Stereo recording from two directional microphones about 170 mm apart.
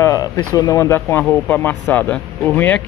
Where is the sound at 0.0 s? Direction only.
20° left (ahead or behind).